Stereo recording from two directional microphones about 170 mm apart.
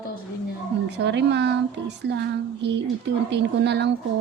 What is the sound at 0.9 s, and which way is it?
Speech, 90° right.